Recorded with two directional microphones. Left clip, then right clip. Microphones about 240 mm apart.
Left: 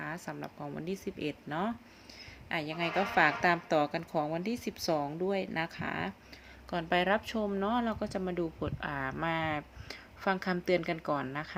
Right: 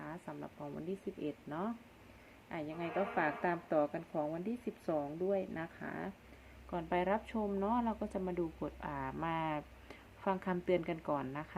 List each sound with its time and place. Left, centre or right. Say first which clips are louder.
0.0 s a woman's voice: left 7 dB; left